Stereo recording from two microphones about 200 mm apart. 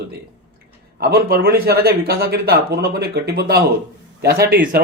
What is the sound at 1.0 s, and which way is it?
Speech, 50° right (ahead or behind).